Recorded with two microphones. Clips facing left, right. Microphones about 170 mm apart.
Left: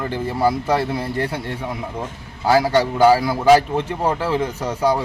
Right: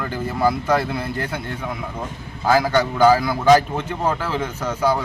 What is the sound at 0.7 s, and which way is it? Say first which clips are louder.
A man's voice: left 1 dB; 30° left (ahead or behind).